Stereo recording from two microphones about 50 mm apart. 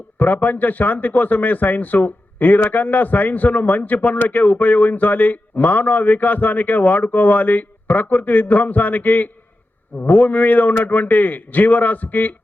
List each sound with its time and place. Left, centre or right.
0.2 s a man's voice: left